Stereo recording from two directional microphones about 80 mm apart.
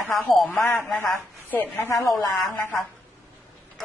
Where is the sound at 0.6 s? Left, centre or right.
Left.